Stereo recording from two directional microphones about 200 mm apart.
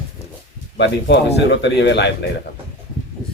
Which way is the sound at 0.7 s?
60° left (ahead or behind).